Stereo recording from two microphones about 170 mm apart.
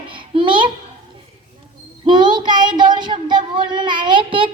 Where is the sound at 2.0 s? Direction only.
25° right (ahead or behind).